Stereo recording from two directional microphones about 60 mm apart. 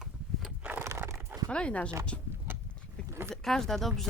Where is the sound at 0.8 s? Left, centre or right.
Right.